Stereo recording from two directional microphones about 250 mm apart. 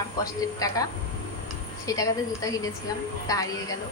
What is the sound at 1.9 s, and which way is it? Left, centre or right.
A woman's voice, centre.